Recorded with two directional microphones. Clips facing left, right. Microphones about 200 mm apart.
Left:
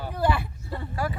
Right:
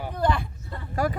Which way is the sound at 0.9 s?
40° right (ahead or behind).